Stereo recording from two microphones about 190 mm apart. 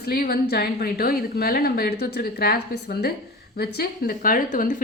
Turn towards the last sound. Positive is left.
turn(degrees=45)  # may be behind; listen again after turning